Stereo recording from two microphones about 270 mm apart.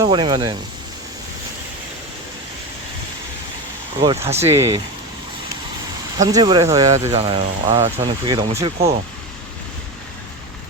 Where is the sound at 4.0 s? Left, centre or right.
Centre.